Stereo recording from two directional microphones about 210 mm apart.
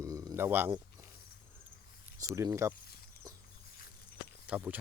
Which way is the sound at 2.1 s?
15° right (ahead or behind).